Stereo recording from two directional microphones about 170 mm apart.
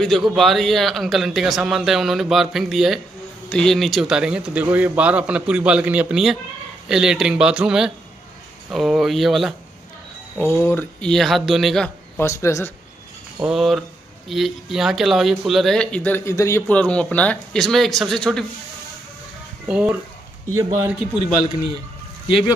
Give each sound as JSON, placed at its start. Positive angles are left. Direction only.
{"t": 0.0, "sound": "a man's voice", "side_deg": 0}
{"t": 10.3, "sound": "speech", "side_deg": 10}
{"t": 12.2, "sound": "speech", "side_deg": 15}
{"t": 13.4, "sound": "speech", "side_deg": 0}
{"t": 19.7, "sound": "a man's voice", "side_deg": -5}